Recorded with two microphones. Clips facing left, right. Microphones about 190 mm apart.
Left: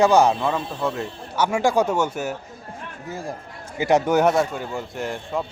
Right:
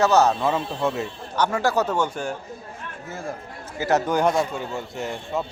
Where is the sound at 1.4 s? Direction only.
10° left (ahead or behind).